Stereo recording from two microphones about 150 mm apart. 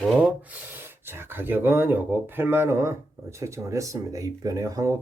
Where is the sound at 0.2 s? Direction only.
10° right (ahead or behind).